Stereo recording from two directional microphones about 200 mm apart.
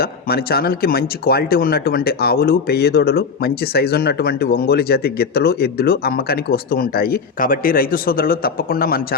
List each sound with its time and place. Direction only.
0.0 s speech: 50° left (ahead or behind)